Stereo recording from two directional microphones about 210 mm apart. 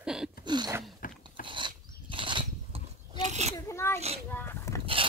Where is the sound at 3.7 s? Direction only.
10° left (ahead or behind).